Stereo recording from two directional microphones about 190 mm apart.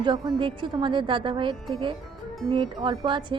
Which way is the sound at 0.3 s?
25° right (ahead or behind).